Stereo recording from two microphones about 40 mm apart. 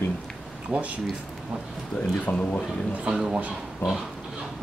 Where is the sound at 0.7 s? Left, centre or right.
Right.